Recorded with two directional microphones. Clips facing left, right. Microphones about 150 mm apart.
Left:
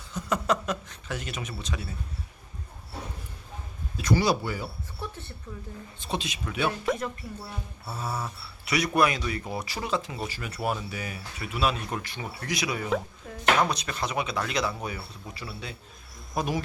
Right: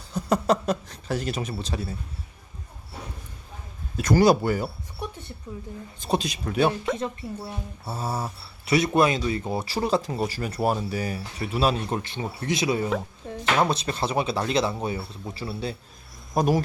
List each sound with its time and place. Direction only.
0.1 s speech: 35° right (ahead or behind)
3.9 s speech: 45° right (ahead or behind)
4.9 s a sound: 15° right (ahead or behind)
6.0 s speech: 40° right (ahead or behind)
6.9 s speech: 20° right (ahead or behind); by 16.6 s 40° right (ahead or behind)